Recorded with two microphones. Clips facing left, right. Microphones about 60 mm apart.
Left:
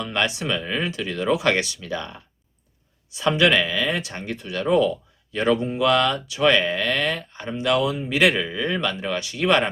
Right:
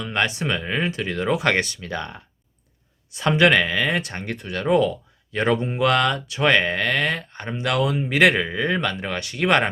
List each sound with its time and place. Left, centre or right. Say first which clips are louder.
0.0 s speech: right 1 dB; right